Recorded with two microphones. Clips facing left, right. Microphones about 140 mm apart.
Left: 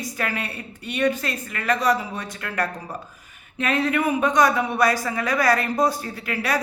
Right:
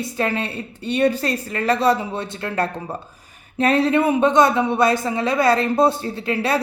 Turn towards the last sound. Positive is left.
turn(degrees=-25)  # may be behind; listen again after turning